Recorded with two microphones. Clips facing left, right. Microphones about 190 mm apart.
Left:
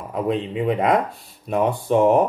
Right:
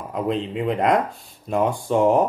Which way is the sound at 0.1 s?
5° left (ahead or behind).